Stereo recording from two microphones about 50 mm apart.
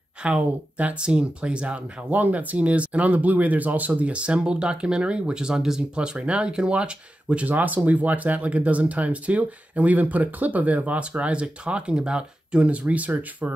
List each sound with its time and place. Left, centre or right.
0.2 s speech: right
2.1 s speech: right; by 5.9 s centre
5.9 s speech: right